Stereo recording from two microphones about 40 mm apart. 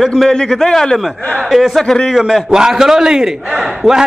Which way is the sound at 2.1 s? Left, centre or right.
Centre.